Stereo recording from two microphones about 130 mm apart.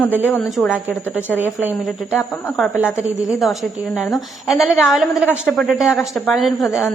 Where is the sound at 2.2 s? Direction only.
15° left (ahead or behind).